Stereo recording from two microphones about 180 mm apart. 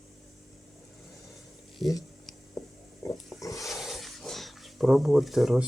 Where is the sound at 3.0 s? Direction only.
15° left (ahead or behind).